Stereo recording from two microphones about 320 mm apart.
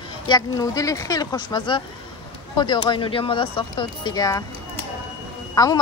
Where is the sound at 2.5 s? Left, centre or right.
Centre.